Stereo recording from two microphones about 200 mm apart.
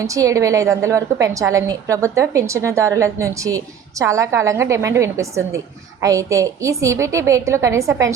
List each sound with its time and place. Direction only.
0.0 s a woman's voice: 15° right (ahead or behind)